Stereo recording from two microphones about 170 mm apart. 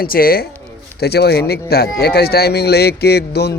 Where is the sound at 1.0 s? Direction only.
70° left (ahead or behind).